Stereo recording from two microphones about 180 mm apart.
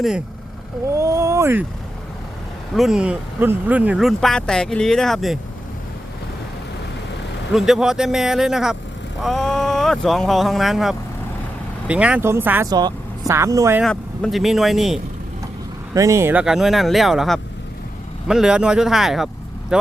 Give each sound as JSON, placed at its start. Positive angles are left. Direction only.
{"t": 0.9, "sound": "speech", "side_deg": -15}
{"t": 2.7, "sound": "speech", "side_deg": -5}
{"t": 7.5, "sound": "speech", "side_deg": 0}
{"t": 13.8, "sound": "speech", "side_deg": 5}
{"t": 16.0, "sound": "speech", "side_deg": -15}